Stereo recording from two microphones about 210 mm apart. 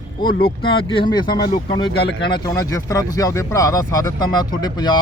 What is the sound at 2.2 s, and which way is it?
Speech, 20° left (ahead or behind).